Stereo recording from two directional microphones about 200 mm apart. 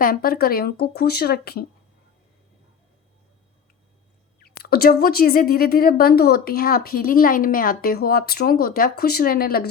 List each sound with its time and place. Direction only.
0.0 s a woman's voice: 45° left (ahead or behind)
4.4 s a woman's voice: 50° left (ahead or behind)